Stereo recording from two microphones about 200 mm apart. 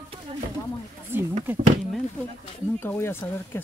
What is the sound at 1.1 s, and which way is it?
Speech, 10° right (ahead or behind).